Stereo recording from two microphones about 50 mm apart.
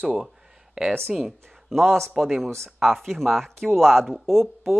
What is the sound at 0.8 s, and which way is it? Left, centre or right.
Speech, centre.